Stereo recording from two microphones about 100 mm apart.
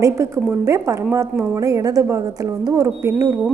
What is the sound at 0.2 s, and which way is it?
A woman's voice, 30° right (ahead or behind).